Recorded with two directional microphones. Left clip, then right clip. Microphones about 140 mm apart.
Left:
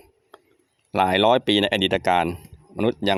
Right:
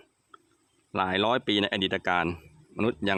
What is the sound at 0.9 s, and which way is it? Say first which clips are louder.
Speech: left 8 dB; 30° left (ahead or behind).